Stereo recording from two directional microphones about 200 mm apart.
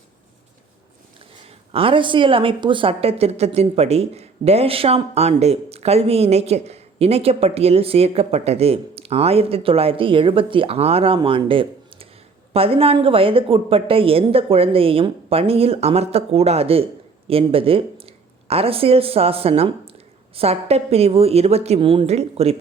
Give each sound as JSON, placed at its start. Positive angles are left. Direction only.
{"t": 1.7, "sound": "a woman's voice", "side_deg": -25}